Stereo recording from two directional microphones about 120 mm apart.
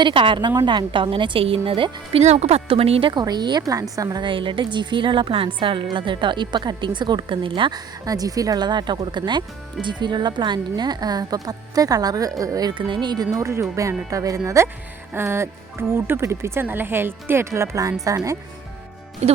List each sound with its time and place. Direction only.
0.0 s a woman's voice: 45° right (ahead or behind)
2.2 s speech: 65° right (ahead or behind)
3.1 s a woman's voice: 35° right (ahead or behind)
8.0 s speech: 30° right (ahead or behind)
19.2 s speech: 65° right (ahead or behind)